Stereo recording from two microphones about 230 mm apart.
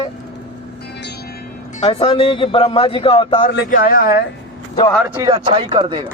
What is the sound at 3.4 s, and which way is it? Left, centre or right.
Speech, left.